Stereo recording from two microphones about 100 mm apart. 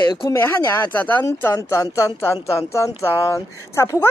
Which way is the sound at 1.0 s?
20° left (ahead or behind).